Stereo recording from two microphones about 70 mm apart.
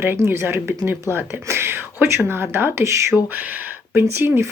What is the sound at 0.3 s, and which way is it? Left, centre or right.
Speech, right.